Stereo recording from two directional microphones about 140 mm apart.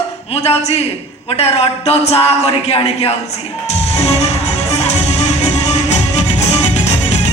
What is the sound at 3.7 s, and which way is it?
Music, 50° left (ahead or behind).